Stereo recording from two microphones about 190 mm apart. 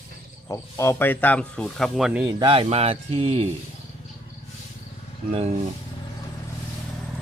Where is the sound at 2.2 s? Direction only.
25° right (ahead or behind).